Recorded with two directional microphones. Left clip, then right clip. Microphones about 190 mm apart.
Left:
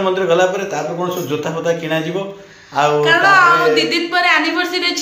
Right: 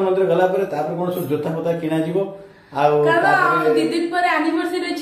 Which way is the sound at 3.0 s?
25° right (ahead or behind).